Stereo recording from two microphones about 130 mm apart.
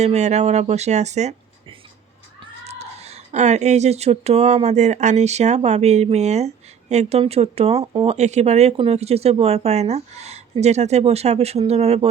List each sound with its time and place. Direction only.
0.0 s speech: 60° right (ahead or behind)
2.6 s speech: 55° right (ahead or behind)